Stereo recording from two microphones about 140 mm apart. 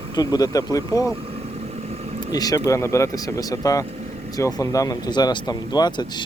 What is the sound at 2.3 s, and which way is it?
Speech, 25° left (ahead or behind).